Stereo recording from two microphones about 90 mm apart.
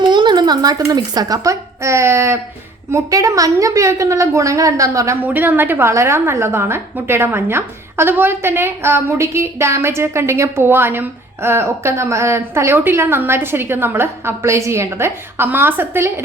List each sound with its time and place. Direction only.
0.0 s a woman's voice: 55° right (ahead or behind); by 5.1 s 40° right (ahead or behind)
5.2 s a woman's voice: 20° right (ahead or behind)